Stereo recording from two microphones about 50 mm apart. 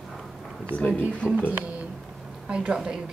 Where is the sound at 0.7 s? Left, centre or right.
Left.